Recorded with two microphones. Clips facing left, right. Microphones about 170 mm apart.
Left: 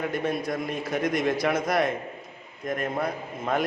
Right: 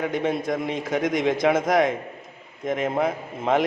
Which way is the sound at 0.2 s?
20° right (ahead or behind).